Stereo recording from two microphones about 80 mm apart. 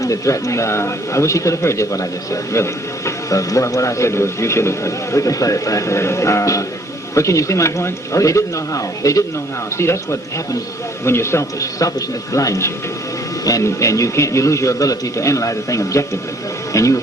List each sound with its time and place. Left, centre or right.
0.0 s a man's voice: left